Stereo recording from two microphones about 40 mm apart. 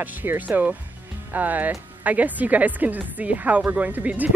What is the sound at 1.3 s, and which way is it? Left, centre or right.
Speech, right.